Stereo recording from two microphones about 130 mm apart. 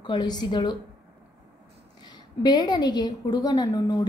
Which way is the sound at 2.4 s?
30° left (ahead or behind).